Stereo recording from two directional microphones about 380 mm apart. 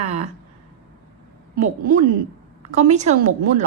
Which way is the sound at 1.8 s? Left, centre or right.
Right.